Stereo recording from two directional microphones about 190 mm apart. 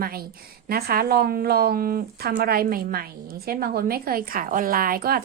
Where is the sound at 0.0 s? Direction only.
50° right (ahead or behind).